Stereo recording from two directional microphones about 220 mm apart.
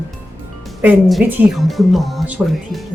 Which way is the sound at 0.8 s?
5° right (ahead or behind).